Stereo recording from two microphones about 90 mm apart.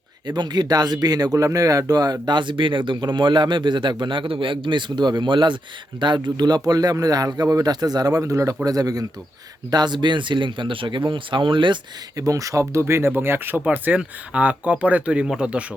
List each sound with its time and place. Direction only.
0.3 s speech: 50° right (ahead or behind)
12.1 s speech: 40° right (ahead or behind); by 15.6 s 10° right (ahead or behind)